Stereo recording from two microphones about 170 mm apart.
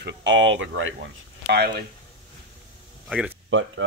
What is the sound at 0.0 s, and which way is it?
Speech, 90° right.